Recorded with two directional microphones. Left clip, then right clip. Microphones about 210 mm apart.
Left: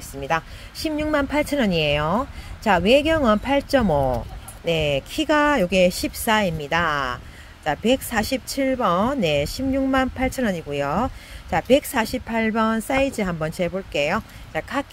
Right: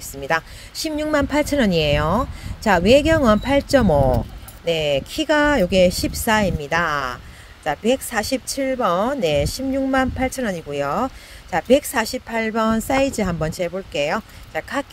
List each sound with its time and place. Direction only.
0.2 s speech: 15° right (ahead or behind)